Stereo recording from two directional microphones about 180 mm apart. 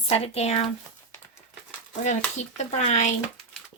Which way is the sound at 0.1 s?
35° left (ahead or behind).